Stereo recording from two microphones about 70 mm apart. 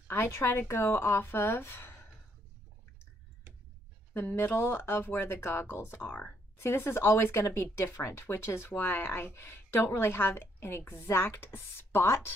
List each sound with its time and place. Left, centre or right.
0.1 s speech: left
4.1 s speech: left
6.0 s speech: left
6.6 s speech: left